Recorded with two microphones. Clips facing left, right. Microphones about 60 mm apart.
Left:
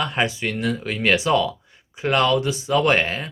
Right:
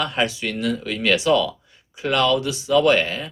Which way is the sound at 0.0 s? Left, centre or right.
Left.